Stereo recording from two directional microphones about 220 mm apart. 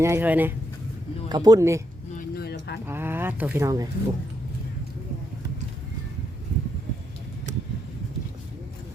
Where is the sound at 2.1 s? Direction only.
45° left (ahead or behind).